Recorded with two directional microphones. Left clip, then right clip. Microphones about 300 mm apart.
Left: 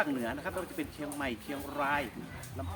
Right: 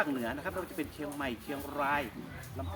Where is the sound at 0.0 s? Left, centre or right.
Centre.